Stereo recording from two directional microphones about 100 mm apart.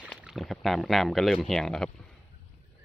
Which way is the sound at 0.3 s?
Centre (ahead or behind).